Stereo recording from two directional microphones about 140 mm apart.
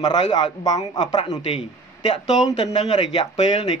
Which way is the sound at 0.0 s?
30° left (ahead or behind).